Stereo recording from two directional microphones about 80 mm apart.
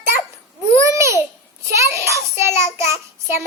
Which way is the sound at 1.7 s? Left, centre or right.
Right.